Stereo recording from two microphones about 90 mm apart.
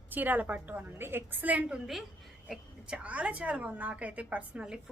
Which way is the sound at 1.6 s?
5° right (ahead or behind).